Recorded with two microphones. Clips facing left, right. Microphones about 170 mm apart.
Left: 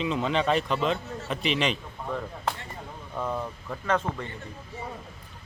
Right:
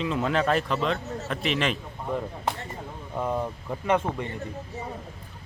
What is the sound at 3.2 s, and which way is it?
Speech, 15° right (ahead or behind).